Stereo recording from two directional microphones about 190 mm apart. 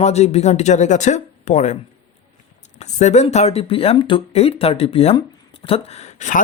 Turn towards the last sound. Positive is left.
turn(degrees=40)  # may be behind; listen again after turning